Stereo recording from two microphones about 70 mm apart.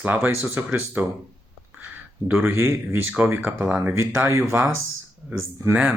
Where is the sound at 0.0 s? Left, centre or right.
Right.